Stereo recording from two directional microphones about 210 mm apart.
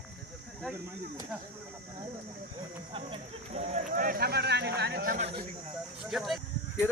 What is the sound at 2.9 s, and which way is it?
Speech, 25° right (ahead or behind).